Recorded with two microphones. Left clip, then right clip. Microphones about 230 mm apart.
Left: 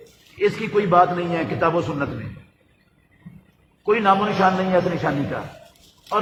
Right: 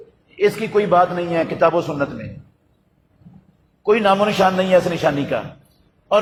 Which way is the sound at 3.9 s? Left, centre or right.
Right.